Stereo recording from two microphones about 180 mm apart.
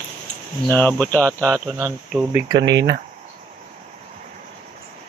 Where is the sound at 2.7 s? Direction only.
70° right (ahead or behind).